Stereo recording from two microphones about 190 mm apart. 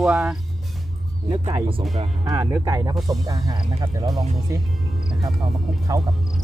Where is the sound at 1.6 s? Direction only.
30° right (ahead or behind).